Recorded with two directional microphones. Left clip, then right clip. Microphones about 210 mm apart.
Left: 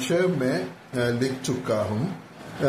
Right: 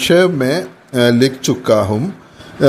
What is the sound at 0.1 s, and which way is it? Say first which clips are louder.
Speech: right 10 dB; 45° right (ahead or behind).